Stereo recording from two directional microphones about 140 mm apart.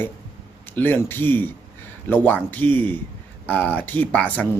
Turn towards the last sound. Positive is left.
turn(degrees=10)  # may be behind; listen again after turning